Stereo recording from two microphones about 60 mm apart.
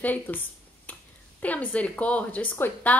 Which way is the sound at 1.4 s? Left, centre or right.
Left.